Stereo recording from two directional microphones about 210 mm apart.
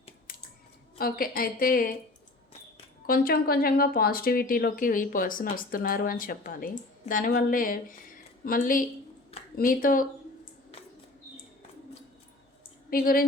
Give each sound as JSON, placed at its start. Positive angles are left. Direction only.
{"t": 0.3, "sound": "scissors", "side_deg": 40}
{"t": 0.9, "sound": "speech", "side_deg": 45}
{"t": 3.1, "sound": "a woman's voice", "side_deg": 45}
{"t": 12.9, "sound": "speech", "side_deg": 45}